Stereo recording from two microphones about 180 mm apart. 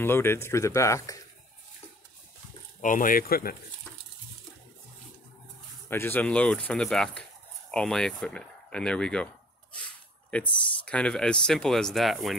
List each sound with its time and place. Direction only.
0.0 s speech: 15° left (ahead or behind)
2.8 s speech: 50° left (ahead or behind)
5.9 s speech: 10° left (ahead or behind)